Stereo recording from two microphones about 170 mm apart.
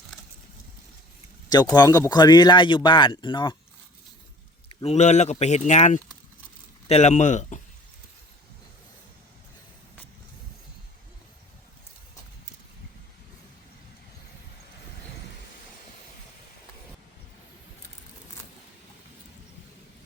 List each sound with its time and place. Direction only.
1.5 s speech: 25° left (ahead or behind)
4.8 s speech: 40° left (ahead or behind)